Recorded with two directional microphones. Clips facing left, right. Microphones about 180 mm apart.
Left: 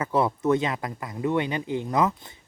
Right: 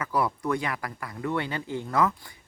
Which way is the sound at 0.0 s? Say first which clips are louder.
Left 4 dB; 25° left (ahead or behind).